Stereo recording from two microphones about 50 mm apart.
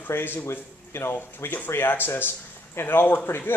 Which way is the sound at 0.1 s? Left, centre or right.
Left.